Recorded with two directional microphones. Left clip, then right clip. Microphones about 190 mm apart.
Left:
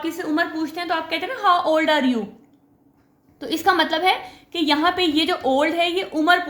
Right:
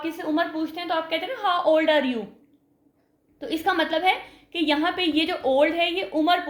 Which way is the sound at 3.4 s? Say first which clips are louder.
Left 5 dB; 25° left (ahead or behind).